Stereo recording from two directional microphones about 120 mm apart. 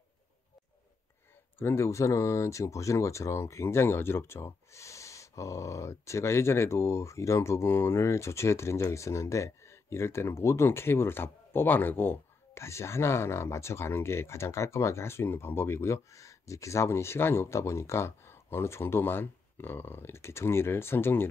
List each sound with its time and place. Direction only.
1.6 s speech: 20° left (ahead or behind)